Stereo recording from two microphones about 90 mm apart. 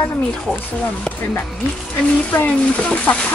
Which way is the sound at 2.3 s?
15° left (ahead or behind).